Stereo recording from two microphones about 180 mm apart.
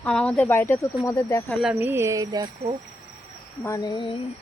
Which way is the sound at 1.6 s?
5° right (ahead or behind).